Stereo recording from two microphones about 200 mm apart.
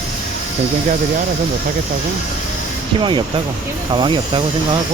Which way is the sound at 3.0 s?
25° right (ahead or behind).